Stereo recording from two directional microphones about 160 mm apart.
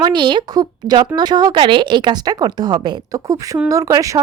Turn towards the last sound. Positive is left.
turn(degrees=-20)  # may be behind; listen again after turning